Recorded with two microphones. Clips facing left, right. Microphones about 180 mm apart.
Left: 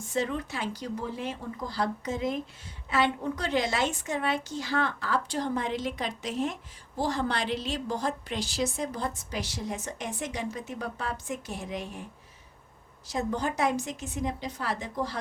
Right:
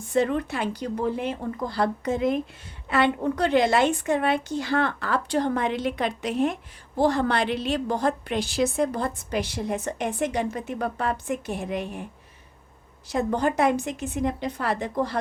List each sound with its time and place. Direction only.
0.1 s a woman's voice: 60° right (ahead or behind)
13.1 s a woman's voice: 60° right (ahead or behind)